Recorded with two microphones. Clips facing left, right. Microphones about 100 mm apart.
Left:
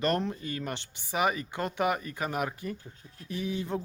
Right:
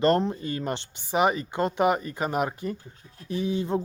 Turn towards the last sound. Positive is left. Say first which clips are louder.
# right 6 dB
turn(degrees=-25)  # may be behind; listen again after turning